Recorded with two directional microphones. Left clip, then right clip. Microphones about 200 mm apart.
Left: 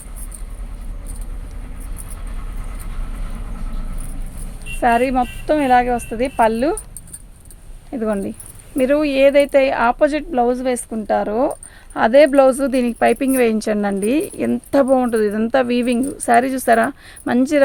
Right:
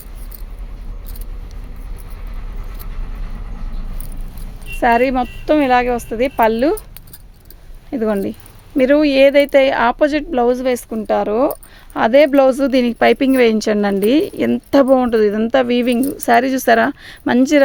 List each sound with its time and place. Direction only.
4.8 s speech: 45° right (ahead or behind)
7.9 s speech: 40° right (ahead or behind)
11.9 s speech: 35° right (ahead or behind)